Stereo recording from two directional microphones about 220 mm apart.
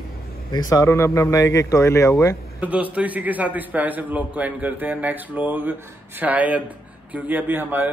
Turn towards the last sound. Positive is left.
turn(degrees=-10)  # may be behind; listen again after turning